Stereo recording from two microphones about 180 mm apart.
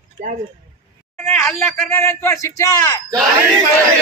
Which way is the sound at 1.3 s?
10° left (ahead or behind).